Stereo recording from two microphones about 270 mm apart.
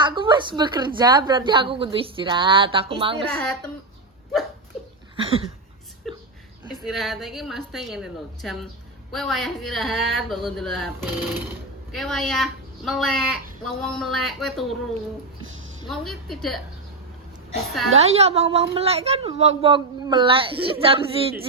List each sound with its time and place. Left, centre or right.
0.0 s a woman's voice: centre
3.3 s speech: centre
5.1 s a sound: right
6.7 s speech: centre
15.9 s speech: centre
18.0 s speech: right